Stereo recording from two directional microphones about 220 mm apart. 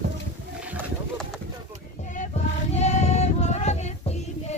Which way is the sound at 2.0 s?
35° left (ahead or behind).